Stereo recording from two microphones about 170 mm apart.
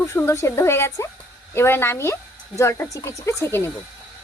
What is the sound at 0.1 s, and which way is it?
Speech, 15° left (ahead or behind).